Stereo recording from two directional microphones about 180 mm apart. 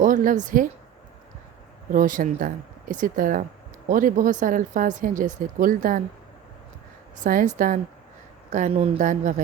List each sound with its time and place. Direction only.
0.0 s a woman's voice: 50° right (ahead or behind)
1.9 s speech: 50° right (ahead or behind)
7.3 s speech: 50° right (ahead or behind)